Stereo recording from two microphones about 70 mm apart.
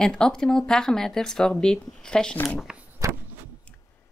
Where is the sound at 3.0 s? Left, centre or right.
Right.